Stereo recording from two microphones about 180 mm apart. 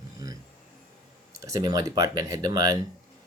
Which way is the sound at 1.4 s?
20° right (ahead or behind).